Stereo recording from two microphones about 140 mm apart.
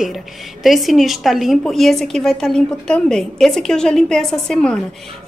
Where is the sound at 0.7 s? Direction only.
Centre (ahead or behind).